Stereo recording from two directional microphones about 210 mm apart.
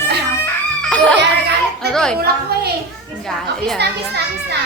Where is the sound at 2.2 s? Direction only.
50° right (ahead or behind).